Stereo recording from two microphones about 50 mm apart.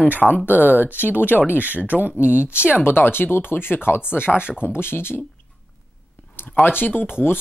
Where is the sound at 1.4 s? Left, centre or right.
Right.